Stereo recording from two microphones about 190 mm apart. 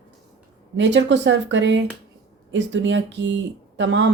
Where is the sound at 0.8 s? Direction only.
70° right (ahead or behind).